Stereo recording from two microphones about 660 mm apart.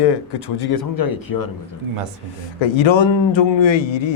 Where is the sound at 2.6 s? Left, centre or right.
Left.